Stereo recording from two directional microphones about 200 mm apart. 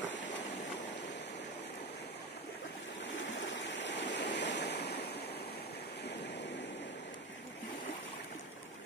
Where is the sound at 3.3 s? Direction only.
65° left (ahead or behind).